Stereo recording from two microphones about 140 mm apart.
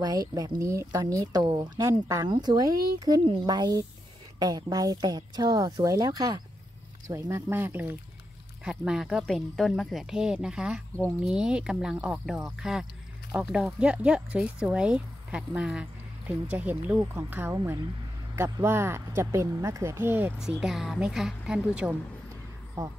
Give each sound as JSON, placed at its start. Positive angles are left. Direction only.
{"t": 0.0, "sound": "speech", "side_deg": -30}
{"t": 8.6, "sound": "speech", "side_deg": -5}